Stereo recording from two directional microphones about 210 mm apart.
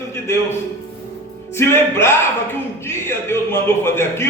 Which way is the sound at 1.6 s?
10° left (ahead or behind).